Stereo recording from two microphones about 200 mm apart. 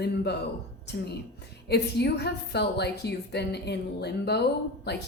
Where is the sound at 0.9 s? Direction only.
55° left (ahead or behind).